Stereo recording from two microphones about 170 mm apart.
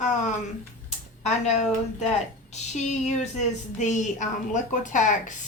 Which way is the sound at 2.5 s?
40° left (ahead or behind).